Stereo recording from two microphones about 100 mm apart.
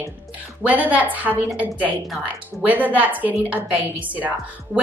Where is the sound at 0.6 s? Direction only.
15° right (ahead or behind).